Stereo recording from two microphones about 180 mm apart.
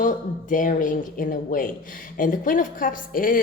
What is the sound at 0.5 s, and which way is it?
A woman's voice, 50° left (ahead or behind).